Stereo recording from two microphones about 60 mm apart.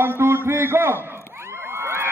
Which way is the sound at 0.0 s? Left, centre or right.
Right.